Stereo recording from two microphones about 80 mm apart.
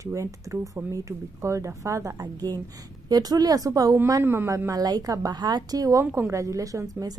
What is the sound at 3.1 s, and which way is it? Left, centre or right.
Speech, right.